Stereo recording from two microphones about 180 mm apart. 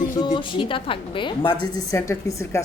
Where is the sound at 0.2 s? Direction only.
25° left (ahead or behind).